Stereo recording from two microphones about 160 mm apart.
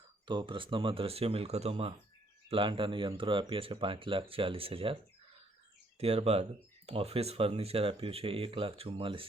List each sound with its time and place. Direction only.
0.3 s speech: 30° right (ahead or behind)
6.0 s speech: 40° right (ahead or behind)